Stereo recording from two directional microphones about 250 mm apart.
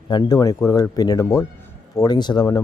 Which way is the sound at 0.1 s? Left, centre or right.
Centre.